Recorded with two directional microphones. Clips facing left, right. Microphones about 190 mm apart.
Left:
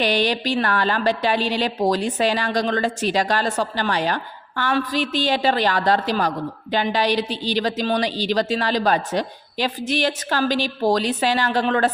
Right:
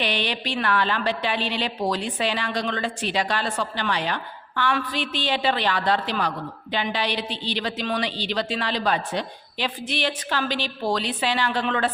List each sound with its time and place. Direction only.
0.0 s a woman's voice: 40° left (ahead or behind)